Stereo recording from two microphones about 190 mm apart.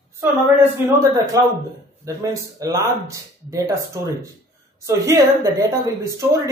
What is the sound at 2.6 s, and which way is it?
A man's voice, 15° right (ahead or behind).